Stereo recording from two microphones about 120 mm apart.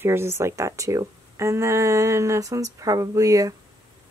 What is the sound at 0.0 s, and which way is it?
Speech, 20° right (ahead or behind).